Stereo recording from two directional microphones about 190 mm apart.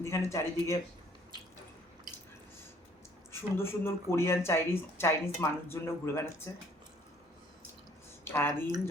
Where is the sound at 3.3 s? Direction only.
10° left (ahead or behind).